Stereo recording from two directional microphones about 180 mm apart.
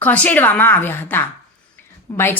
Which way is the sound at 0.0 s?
10° left (ahead or behind).